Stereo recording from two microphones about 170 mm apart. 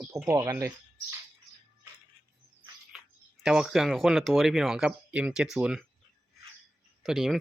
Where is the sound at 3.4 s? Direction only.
5° right (ahead or behind).